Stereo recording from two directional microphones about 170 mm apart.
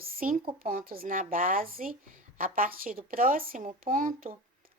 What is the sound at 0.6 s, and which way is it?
Speech, 55° right (ahead or behind).